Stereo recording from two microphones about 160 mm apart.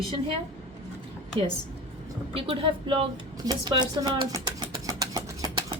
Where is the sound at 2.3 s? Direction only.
35° right (ahead or behind).